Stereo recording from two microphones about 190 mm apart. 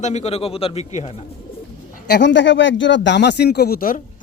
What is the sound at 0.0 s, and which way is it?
A man's voice, 35° left (ahead or behind).